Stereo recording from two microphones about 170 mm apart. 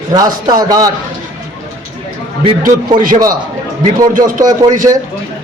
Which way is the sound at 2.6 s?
55° right (ahead or behind).